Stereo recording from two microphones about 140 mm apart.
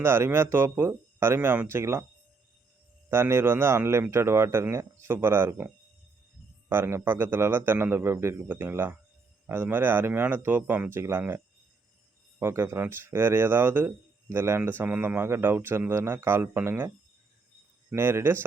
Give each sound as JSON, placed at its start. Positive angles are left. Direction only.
{"t": 0.0, "sound": "speech", "side_deg": -15}
{"t": 3.1, "sound": "speech", "side_deg": -15}
{"t": 6.7, "sound": "speech", "side_deg": -15}
{"t": 12.4, "sound": "speech", "side_deg": -15}
{"t": 17.9, "sound": "speech", "side_deg": -15}